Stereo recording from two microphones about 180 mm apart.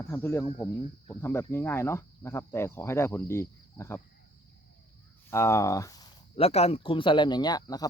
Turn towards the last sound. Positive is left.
turn(degrees=20)  # may be behind; listen again after turning